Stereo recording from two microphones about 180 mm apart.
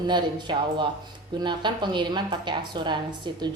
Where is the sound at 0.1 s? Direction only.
25° right (ahead or behind).